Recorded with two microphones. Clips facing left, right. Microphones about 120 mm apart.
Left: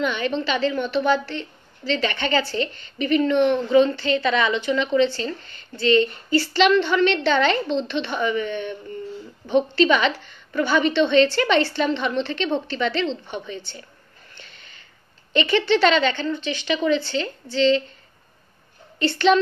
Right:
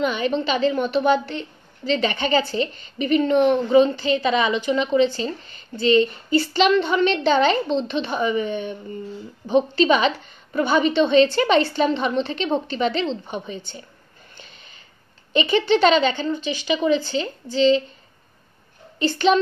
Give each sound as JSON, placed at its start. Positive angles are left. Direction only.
{"t": 0.4, "sound": "a woman's voice", "side_deg": -20}
{"t": 7.7, "sound": "a woman's voice", "side_deg": -35}
{"t": 8.5, "sound": "a woman's voice", "side_deg": -15}
{"t": 15.3, "sound": "a woman's voice", "side_deg": -15}
{"t": 18.9, "sound": "a woman's voice", "side_deg": -15}